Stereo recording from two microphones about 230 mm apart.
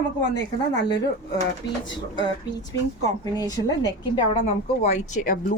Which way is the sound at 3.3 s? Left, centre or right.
Centre.